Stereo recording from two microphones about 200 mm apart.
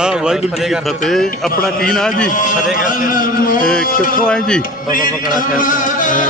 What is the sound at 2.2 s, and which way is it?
Music, 40° left (ahead or behind).